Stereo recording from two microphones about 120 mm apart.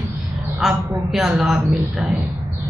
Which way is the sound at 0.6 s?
Centre (ahead or behind).